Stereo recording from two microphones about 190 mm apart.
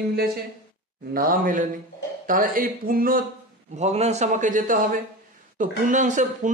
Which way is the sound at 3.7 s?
35° right (ahead or behind).